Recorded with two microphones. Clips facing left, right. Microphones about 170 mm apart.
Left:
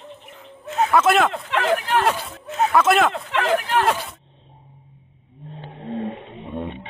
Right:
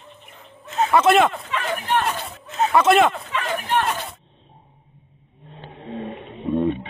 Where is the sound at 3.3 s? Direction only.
85° left.